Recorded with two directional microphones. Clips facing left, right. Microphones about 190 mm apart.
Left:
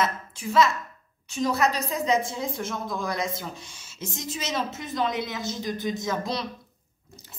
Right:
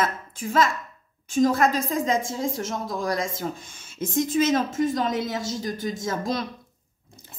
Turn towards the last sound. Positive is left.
turn(degrees=-45)  # may be behind; listen again after turning